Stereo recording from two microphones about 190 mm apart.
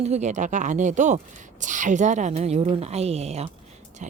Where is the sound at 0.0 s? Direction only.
35° right (ahead or behind).